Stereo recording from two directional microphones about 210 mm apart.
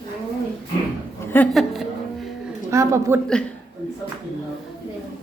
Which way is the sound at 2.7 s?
15° right (ahead or behind).